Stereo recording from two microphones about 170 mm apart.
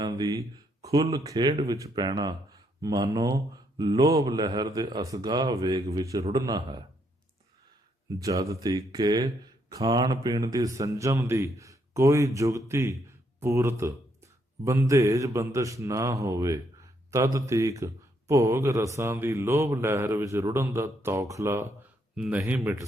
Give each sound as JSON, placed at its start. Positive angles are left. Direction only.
{"t": 0.0, "sound": "speech", "side_deg": -25}
{"t": 8.2, "sound": "speech", "side_deg": -20}
{"t": 22.1, "sound": "speech", "side_deg": -5}